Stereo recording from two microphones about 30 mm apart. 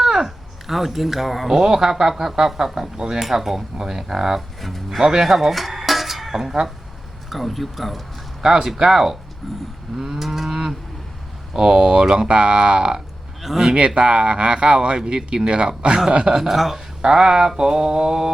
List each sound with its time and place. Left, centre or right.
0.0 s speech: centre
4.4 s speech: centre
4.9 s speech: centre
5.2 s dishes: centre
7.3 s speech: centre
8.6 s speech: centre
9.4 s vehicle: centre
10.0 s cattle: centre
11.5 s speech: centre
13.4 s speech: centre
13.7 s speech: right
16.2 s speech: centre
17.0 s speech: right